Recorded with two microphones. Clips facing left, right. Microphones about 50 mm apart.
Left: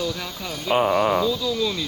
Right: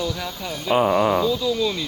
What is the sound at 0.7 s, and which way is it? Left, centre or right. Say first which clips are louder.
Speech: right 1 dB; right.